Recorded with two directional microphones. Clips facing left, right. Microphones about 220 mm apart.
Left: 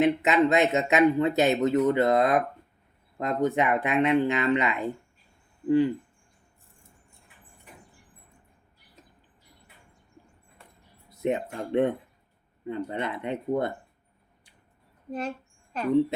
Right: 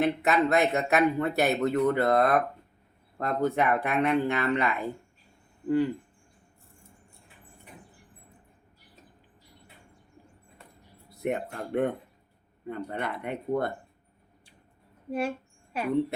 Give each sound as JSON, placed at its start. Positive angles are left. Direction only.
{"t": 0.0, "sound": "speech", "side_deg": 20}
{"t": 11.2, "sound": "speech", "side_deg": 20}
{"t": 15.7, "sound": "a woman's voice", "side_deg": -10}